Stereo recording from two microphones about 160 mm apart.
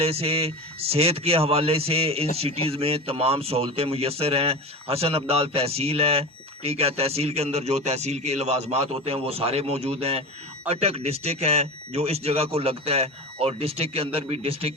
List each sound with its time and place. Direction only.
0.0 s speech: 40° right (ahead or behind)